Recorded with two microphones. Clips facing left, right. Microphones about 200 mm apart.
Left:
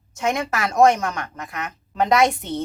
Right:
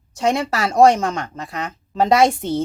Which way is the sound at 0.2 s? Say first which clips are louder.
Right 4 dB; 35° right (ahead or behind).